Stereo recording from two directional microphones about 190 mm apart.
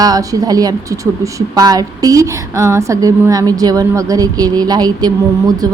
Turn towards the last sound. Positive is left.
turn(degrees=-20)  # may be behind; listen again after turning